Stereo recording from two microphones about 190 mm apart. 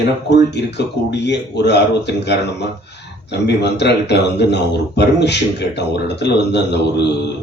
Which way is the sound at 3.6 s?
60° left (ahead or behind).